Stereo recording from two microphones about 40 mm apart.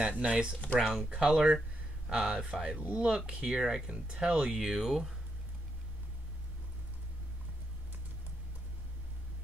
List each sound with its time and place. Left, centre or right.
0.2 s speech: right
0.7 s speech: centre
3.9 s speech: right